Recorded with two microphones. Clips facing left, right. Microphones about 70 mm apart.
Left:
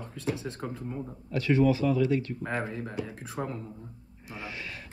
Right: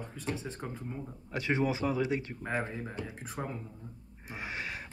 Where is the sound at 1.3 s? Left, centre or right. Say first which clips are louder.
Left 6 dB; right; by 3.6 s centre.